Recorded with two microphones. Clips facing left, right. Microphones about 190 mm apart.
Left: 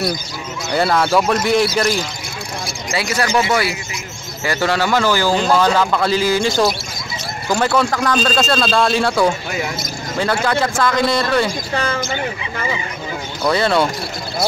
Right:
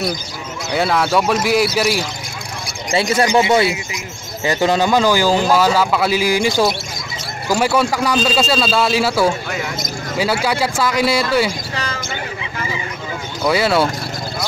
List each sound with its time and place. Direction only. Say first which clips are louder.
0.7 s a man's voice: left 1 dB; centre (ahead or behind)
2.9 s a man's voice: right 4 dB; 25° right (ahead or behind); by 11.5 s 10° right (ahead or behind)
13.4 s a man's voice: even; 5° right (ahead or behind)